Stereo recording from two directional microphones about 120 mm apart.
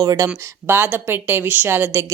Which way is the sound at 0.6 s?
20° right (ahead or behind).